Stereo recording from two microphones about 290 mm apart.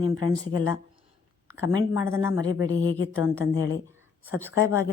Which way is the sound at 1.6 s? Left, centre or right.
Centre.